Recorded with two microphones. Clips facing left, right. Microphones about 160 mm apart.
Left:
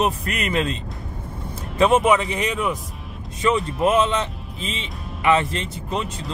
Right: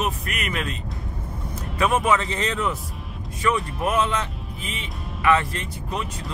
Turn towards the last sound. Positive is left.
turn(degrees=25)  # may be behind; listen again after turning